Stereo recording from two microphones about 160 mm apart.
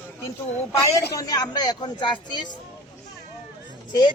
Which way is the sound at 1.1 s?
25° left (ahead or behind).